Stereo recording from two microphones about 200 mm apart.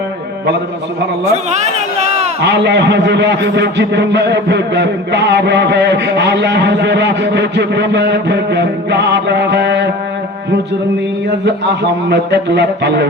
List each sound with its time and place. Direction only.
1.3 s a sound: 35° right (ahead or behind)
2.4 s a man's voice: 60° right (ahead or behind)
11.4 s a man's voice: 55° right (ahead or behind)